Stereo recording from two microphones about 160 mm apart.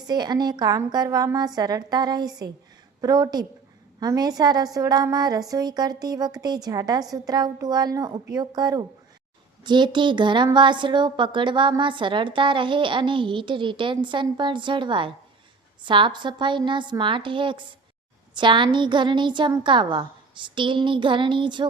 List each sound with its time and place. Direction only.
0.0 s a woman's voice: 25° right (ahead or behind)